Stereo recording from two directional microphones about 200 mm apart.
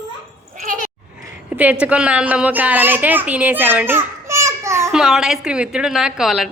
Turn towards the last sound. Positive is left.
turn(degrees=0)  # may be behind; listen again after turning